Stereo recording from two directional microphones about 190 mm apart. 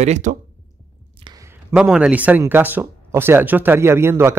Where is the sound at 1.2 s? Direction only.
15° right (ahead or behind).